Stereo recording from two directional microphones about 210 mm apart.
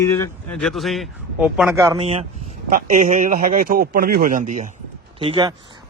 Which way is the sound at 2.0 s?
30° right (ahead or behind).